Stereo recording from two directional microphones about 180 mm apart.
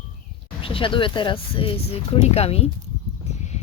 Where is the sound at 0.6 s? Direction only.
30° left (ahead or behind).